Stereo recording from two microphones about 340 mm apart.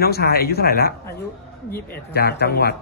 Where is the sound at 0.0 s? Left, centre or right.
Left.